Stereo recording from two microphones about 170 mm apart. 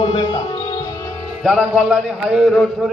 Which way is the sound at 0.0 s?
30° left (ahead or behind).